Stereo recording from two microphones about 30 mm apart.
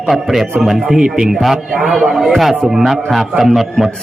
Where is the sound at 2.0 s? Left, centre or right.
Centre.